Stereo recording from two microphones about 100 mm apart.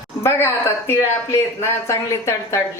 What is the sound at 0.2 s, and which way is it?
A woman's voice, 25° left (ahead or behind).